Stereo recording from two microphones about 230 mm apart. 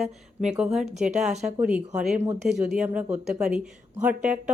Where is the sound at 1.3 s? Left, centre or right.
Right.